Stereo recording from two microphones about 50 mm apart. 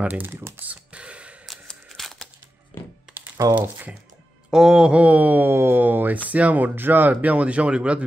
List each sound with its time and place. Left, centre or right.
0.3 s speech: right
0.9 s gasp: right
2.0 s a sound: centre
3.1 s computer keyboard: centre
3.5 s speech: right
4.5 s speech: centre; by 5.5 s right
5.5 s speech: right